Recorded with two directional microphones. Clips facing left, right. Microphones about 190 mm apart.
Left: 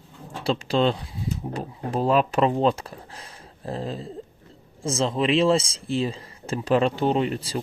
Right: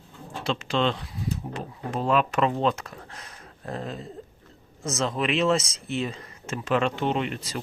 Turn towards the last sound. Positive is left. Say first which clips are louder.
# left 4 dB
turn(degrees=30)  # may be behind; listen again after turning